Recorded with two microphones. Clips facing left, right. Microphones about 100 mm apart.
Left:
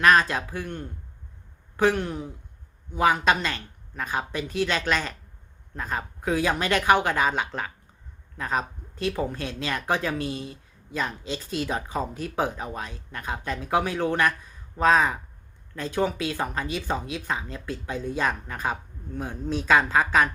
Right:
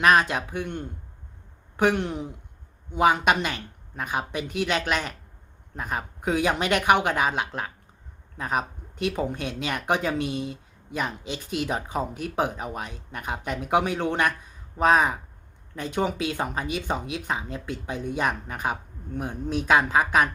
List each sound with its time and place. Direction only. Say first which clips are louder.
0.0 s speech: even; 15° right (ahead or behind)